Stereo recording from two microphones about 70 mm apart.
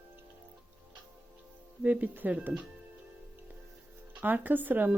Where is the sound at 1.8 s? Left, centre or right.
Right.